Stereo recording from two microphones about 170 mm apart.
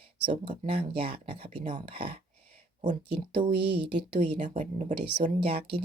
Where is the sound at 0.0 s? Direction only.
35° right (ahead or behind).